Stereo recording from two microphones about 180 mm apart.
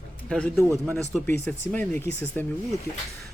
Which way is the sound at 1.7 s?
10° left (ahead or behind).